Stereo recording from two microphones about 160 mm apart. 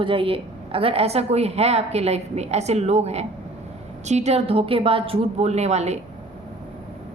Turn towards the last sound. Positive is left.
turn(degrees=-45)  # may be behind; listen again after turning